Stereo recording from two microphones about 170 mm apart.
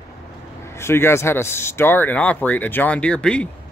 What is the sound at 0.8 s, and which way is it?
Speech, 15° left (ahead or behind).